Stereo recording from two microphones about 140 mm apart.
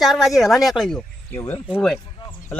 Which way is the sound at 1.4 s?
15° left (ahead or behind).